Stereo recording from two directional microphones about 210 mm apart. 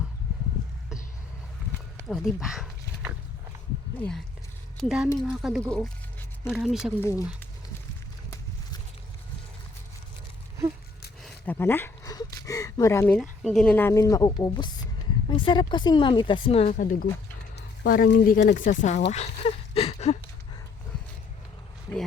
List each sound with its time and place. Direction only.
2.0 s speech: centre (ahead or behind)
4.8 s speech: centre (ahead or behind)
7.0 s a woman's voice: 15° left (ahead or behind)
11.2 s a sound: 10° left (ahead or behind)
13.4 s a woman's voice: centre (ahead or behind); by 19.0 s 35° left (ahead or behind)
19.1 s a sound: 30° left (ahead or behind)